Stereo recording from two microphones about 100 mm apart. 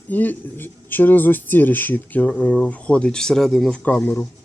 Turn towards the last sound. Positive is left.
turn(degrees=20)  # may be behind; listen again after turning